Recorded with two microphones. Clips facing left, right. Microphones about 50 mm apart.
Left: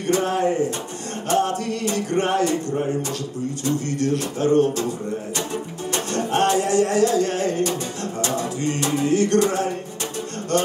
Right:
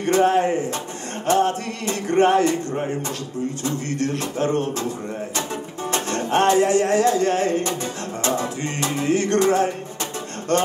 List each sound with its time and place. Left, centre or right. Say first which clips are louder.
0.1 s music: right 3 dB; right
3.6 s music: left 4 dB; right
5.9 s music: right 1 dB; right